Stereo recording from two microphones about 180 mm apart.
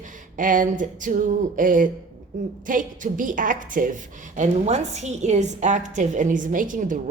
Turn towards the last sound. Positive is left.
turn(degrees=-50)  # may be behind; listen again after turning